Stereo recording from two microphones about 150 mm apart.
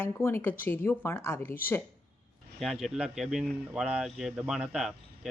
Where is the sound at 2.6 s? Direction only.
Centre (ahead or behind).